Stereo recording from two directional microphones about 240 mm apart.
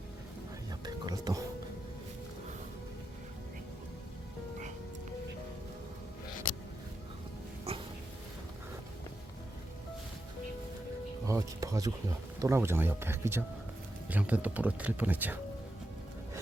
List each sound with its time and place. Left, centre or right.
0.7 s music: centre
7.7 s dog: right
11.3 s music: centre
12.4 s speech: centre